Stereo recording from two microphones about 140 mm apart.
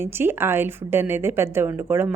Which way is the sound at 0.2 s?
15° right (ahead or behind).